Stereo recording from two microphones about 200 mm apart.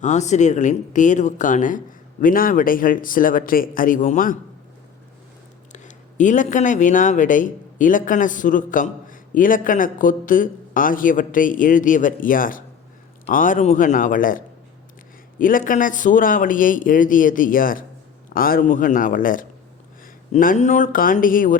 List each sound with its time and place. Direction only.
0.0 s speech: 35° left (ahead or behind)
5.7 s speech: 40° left (ahead or behind)